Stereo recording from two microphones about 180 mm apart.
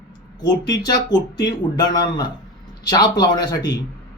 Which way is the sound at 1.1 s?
25° left (ahead or behind).